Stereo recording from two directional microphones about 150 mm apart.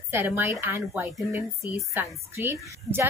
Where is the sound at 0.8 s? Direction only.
Centre (ahead or behind).